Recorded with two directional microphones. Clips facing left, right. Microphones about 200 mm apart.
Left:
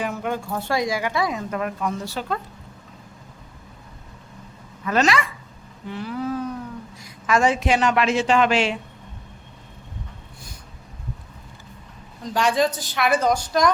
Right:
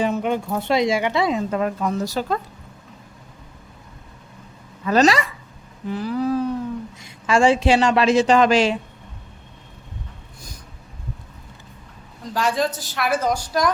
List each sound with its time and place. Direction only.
0.0 s speech: 20° right (ahead or behind)
2.0 s a woman's voice: 40° right (ahead or behind)
4.9 s a woman's voice: 35° right (ahead or behind)
12.2 s a woman's voice: centre (ahead or behind)